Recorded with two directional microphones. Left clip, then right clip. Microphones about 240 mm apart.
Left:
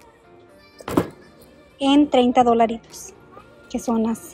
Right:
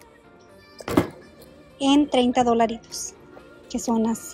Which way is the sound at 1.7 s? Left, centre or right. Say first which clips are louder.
Left 3 dB; centre.